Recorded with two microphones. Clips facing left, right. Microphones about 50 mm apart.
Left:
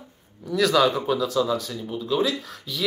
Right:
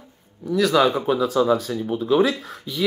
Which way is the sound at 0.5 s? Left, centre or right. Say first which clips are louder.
Right 2 dB; centre.